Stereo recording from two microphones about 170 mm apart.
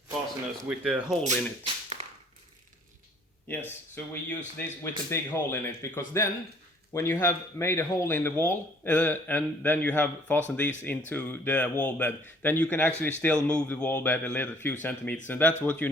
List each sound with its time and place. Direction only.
0.7 s speech: 5° right (ahead or behind)
1.2 s a sound: 40° right (ahead or behind)
3.5 s speech: 10° left (ahead or behind)